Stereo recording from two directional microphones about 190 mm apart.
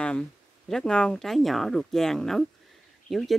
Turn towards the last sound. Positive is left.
turn(degrees=0)  # may be behind; listen again after turning